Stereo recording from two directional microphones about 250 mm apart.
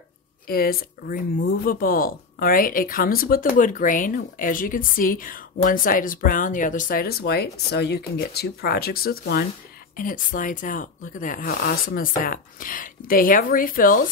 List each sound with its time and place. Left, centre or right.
0.5 s speech: left